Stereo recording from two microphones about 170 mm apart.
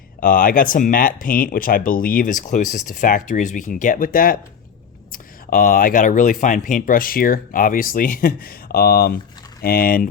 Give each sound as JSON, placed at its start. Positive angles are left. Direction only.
{"t": 0.2, "sound": "speech", "side_deg": 55}